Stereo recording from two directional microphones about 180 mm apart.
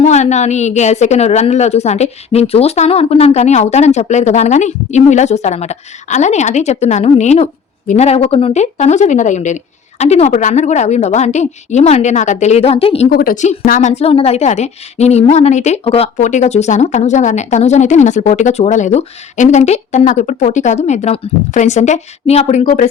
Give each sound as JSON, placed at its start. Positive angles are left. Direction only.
{"t": 0.0, "sound": "a woman's voice", "side_deg": 40}
{"t": 13.1, "sound": "a woman's voice", "side_deg": 55}
{"t": 22.6, "sound": "speech", "side_deg": 50}